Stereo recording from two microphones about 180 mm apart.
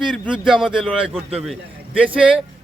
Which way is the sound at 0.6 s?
Centre (ahead or behind).